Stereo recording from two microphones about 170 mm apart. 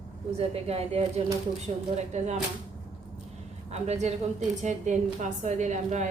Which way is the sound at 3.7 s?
40° right (ahead or behind).